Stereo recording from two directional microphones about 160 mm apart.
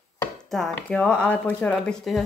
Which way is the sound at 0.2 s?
5° left (ahead or behind).